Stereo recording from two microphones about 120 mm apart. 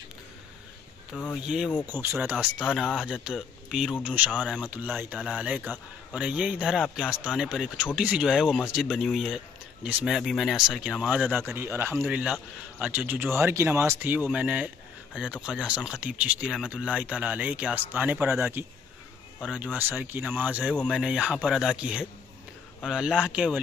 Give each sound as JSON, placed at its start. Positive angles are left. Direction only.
{"t": 1.3, "sound": "speech", "side_deg": -5}
{"t": 1.9, "sound": "a man's voice", "side_deg": -20}
{"t": 2.8, "sound": "speech", "side_deg": 5}
{"t": 3.1, "sound": "a man's voice", "side_deg": -5}
{"t": 4.3, "sound": "speech", "side_deg": 5}
{"t": 4.6, "sound": "a man's voice", "side_deg": -15}
{"t": 12.1, "sound": "a man's voice", "side_deg": -10}
{"t": 19.4, "sound": "a man's voice", "side_deg": -10}